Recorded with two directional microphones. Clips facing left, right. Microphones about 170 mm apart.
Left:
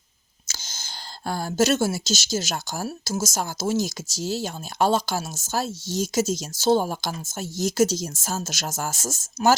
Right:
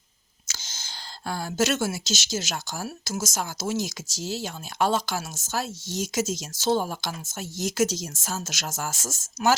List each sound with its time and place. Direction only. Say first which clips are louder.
0.4 s speech: left 2 dB; 40° left (ahead or behind)